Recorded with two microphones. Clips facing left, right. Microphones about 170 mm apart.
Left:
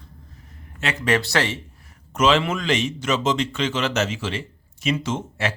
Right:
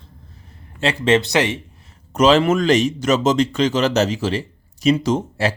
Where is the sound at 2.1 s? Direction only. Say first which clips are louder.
Right 6 dB; 40° right (ahead or behind).